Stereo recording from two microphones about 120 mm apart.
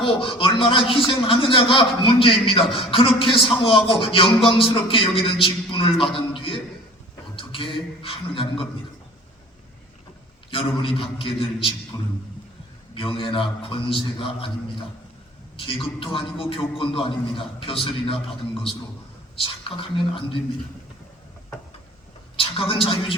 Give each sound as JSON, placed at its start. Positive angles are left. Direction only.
{"t": 0.0, "sound": "speech", "side_deg": 45}
{"t": 10.8, "sound": "speech", "side_deg": 45}
{"t": 11.9, "sound": "speech", "side_deg": 30}
{"t": 12.9, "sound": "speech", "side_deg": 45}
{"t": 22.4, "sound": "a man's voice", "side_deg": 50}